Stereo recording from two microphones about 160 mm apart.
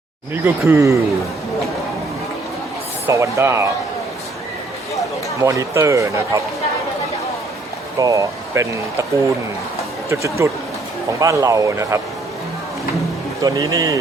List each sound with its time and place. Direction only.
0.4 s speech: 15° right (ahead or behind)
3.1 s speech: 20° right (ahead or behind)
5.4 s speech: 20° right (ahead or behind)
7.9 s speech: 20° right (ahead or behind)
10.1 s speech: 20° right (ahead or behind)
13.4 s speech: 20° right (ahead or behind)